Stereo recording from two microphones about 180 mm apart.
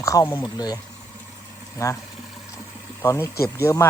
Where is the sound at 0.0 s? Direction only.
20° left (ahead or behind).